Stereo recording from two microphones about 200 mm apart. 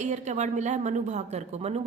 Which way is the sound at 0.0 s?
35° right (ahead or behind).